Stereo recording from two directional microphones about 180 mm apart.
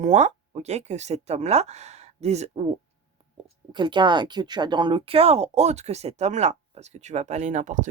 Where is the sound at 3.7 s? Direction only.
25° right (ahead or behind).